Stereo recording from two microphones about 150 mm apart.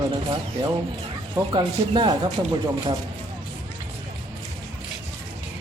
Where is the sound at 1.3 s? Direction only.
30° right (ahead or behind).